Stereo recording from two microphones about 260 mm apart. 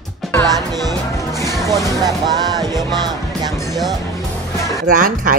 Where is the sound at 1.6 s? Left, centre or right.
Centre.